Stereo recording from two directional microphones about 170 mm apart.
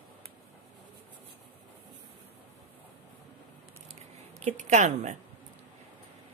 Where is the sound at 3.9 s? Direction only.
45° right (ahead or behind).